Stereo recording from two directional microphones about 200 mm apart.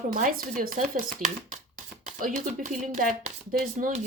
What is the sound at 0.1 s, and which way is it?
Speech, 45° right (ahead or behind).